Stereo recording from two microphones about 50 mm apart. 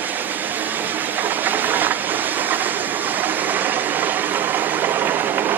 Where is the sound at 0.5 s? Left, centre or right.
Right.